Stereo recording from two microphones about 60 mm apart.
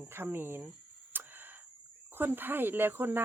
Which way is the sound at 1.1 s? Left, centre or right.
Right.